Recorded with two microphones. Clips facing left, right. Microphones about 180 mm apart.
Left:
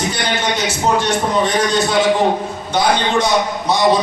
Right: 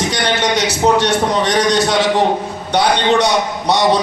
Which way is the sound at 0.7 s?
75° right (ahead or behind).